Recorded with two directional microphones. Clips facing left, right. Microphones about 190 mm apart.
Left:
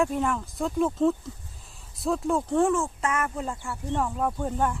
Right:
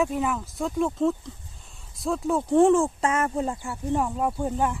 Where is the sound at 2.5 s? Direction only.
25° right (ahead or behind); by 4.8 s 10° right (ahead or behind).